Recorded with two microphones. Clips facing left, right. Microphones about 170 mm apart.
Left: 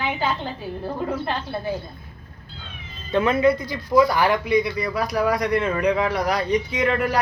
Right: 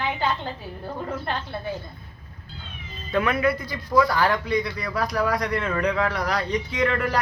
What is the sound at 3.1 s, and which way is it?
Speech, 25° left (ahead or behind).